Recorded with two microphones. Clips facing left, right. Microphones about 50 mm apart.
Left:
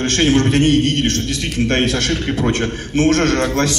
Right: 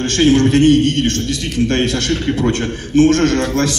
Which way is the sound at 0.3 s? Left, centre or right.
Left.